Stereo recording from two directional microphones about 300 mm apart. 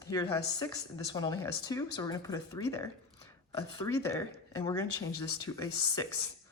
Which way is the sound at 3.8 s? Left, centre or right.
Centre.